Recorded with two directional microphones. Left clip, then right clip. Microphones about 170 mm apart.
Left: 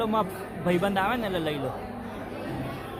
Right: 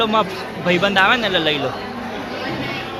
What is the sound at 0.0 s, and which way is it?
A man's voice, 10° left (ahead or behind).